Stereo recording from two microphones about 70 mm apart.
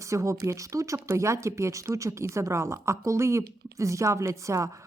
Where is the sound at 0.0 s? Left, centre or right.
Right.